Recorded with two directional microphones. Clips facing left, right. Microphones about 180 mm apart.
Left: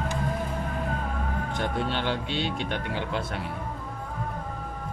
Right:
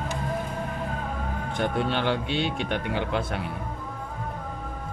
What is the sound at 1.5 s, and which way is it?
Speech, 55° right (ahead or behind).